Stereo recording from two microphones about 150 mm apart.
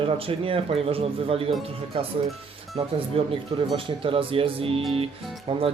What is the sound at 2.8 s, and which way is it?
A man's voice, 40° right (ahead or behind).